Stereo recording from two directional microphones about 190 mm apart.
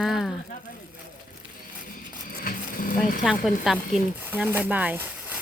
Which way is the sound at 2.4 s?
45° left (ahead or behind).